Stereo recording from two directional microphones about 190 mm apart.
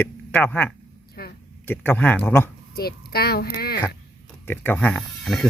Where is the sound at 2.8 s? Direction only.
55° left (ahead or behind).